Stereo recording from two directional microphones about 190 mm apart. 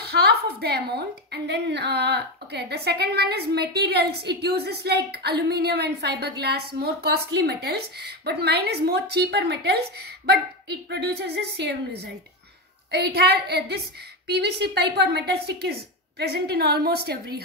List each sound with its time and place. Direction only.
0.0 s a woman's voice: 60° right (ahead or behind)
12.9 s a woman's voice: 60° right (ahead or behind)